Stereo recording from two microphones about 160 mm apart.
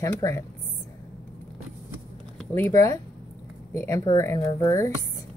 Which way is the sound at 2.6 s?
20° left (ahead or behind).